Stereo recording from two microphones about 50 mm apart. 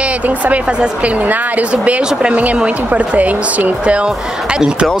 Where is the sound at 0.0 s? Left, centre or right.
Right.